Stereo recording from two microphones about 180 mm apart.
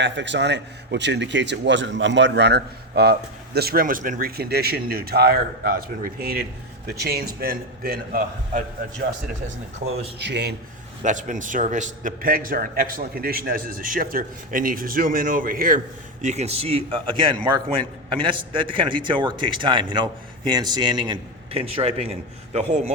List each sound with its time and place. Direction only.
0.0 s a man's voice: 80° right; by 8.6 s 55° right (ahead or behind)
9.8 s speech: 70° right (ahead or behind)
11.0 s a man's voice: 45° right (ahead or behind)
16.2 s a man's voice: 40° right (ahead or behind)